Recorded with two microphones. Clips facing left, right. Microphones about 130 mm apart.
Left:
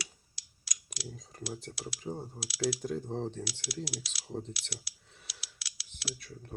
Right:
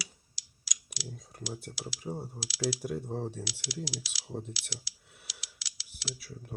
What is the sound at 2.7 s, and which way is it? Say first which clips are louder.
Speech: even; 5° right (ahead or behind).